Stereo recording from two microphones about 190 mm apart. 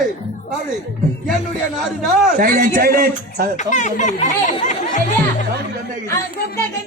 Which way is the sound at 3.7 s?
40° left (ahead or behind).